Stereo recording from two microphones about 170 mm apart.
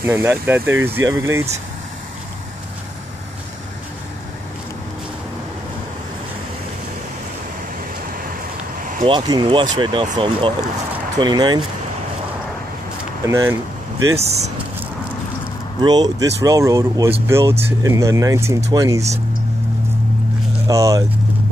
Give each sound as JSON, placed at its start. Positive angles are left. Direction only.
{"t": 0.0, "sound": "speech", "side_deg": -15}
{"t": 9.0, "sound": "speech", "side_deg": -25}
{"t": 13.2, "sound": "speech", "side_deg": -15}
{"t": 15.8, "sound": "speech", "side_deg": -25}
{"t": 20.6, "sound": "speech", "side_deg": -20}